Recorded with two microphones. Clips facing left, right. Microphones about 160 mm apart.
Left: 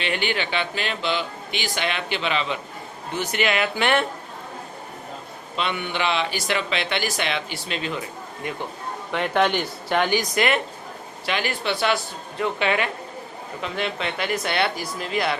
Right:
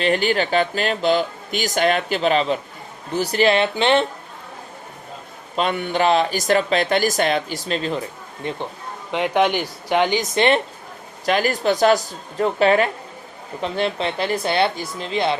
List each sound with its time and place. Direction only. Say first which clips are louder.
0.0 s speech: right 7 dB; 40° right (ahead or behind); by 4.0 s 25° right (ahead or behind)
5.5 s speech: right 6 dB; 45° right (ahead or behind)
8.4 s speech: right 4 dB; 25° right (ahead or behind)
9.1 s speech: right 3 dB; 15° right (ahead or behind)
11.3 s speech: right 7 dB; 40° right (ahead or behind); by 15.4 s 25° right (ahead or behind)